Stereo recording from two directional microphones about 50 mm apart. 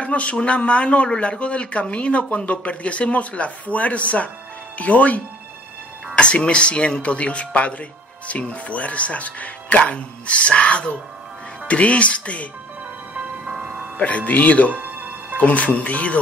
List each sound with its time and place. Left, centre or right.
0.0 s speech: left
13.1 s music: right
13.9 s speech: left
14.7 s music: right
15.3 s speech: left